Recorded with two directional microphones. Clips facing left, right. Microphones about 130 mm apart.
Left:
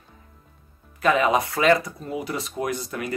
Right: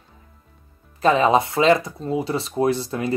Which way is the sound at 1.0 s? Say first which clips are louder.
Right 4 dB; 30° right (ahead or behind).